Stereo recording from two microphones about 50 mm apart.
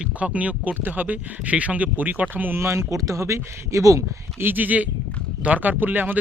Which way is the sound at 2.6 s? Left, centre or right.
Right.